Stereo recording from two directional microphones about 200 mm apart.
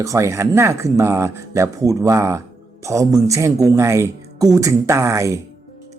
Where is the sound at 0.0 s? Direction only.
15° right (ahead or behind).